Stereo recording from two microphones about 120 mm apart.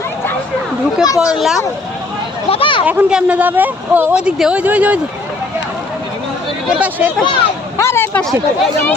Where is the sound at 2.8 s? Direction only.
10° right (ahead or behind).